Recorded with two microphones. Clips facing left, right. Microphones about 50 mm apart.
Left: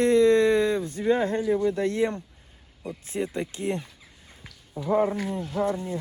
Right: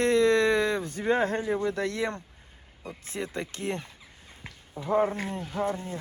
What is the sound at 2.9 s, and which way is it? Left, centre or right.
Speech, right.